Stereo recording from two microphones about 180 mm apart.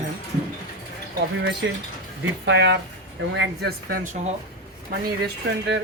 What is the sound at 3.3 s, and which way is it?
Speech, 65° right (ahead or behind).